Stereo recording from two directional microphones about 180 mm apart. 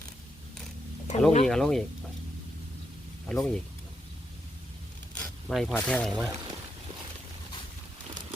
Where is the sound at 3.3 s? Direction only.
5° left (ahead or behind).